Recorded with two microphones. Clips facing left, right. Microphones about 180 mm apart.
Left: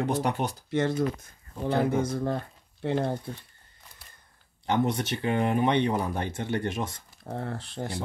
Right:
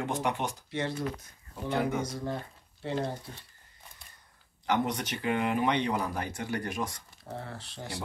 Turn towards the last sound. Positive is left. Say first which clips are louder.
# left 8 dB
turn(degrees=55)  # may be behind; listen again after turning